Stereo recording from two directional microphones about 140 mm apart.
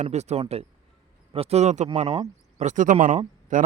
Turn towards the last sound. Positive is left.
turn(degrees=-65)  # may be behind; listen again after turning